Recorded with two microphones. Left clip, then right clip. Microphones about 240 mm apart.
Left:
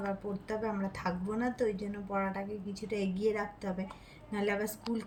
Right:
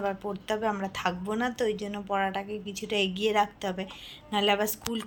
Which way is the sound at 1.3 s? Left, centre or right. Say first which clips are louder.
Right 2 dB; centre.